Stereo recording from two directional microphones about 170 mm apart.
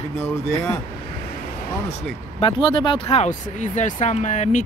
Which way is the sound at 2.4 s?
30° left (ahead or behind).